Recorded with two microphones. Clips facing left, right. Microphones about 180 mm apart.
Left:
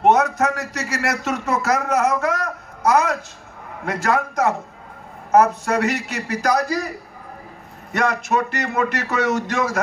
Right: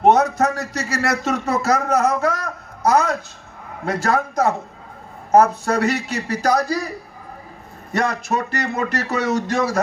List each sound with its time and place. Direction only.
0.0 s a man's voice: 35° right (ahead or behind)
7.9 s a man's voice: 35° right (ahead or behind)